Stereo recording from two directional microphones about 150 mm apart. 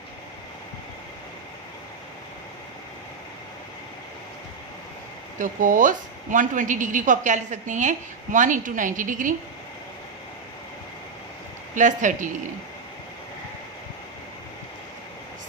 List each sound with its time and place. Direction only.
5.4 s a woman's voice: 60° right (ahead or behind)
11.7 s a woman's voice: 55° right (ahead or behind)